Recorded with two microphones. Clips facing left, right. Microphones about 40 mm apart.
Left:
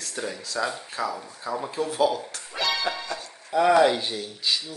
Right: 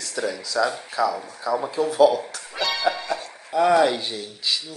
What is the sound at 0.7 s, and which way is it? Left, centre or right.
Speech, right.